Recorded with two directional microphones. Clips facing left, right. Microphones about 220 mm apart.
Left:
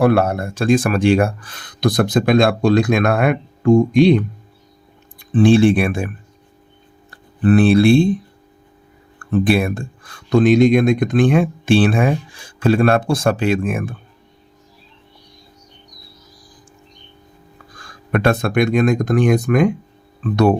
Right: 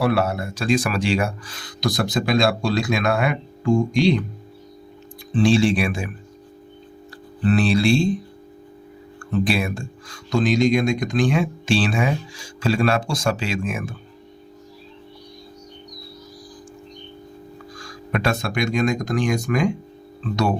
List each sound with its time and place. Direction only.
0.0 s speech: 50° left (ahead or behind)
5.3 s speech: 55° left (ahead or behind)
7.4 s speech: 55° left (ahead or behind)
9.1 s speech: 55° left (ahead or behind)
17.7 s speech: 55° left (ahead or behind)